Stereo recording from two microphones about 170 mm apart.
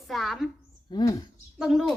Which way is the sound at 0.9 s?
25° left (ahead or behind).